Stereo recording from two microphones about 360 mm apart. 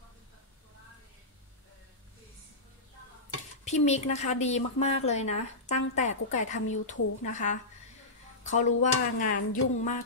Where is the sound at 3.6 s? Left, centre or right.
Centre.